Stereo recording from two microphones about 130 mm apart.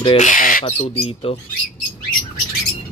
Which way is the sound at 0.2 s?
85° left.